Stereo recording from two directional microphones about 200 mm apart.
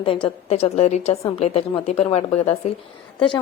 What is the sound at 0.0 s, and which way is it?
A woman's voice, 25° left (ahead or behind).